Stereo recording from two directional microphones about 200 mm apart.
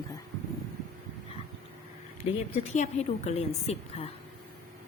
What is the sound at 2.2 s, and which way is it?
A woman's voice, 30° left (ahead or behind).